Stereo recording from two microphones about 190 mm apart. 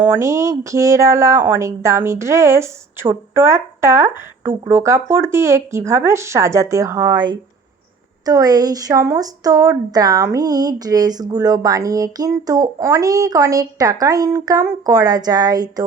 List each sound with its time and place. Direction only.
0.0 s a woman's voice: 15° right (ahead or behind)